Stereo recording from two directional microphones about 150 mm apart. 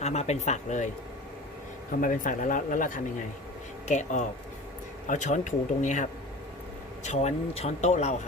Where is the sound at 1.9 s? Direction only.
65° left (ahead or behind).